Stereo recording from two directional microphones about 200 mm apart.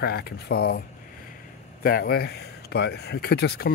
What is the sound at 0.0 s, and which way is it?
Speech, 50° left (ahead or behind).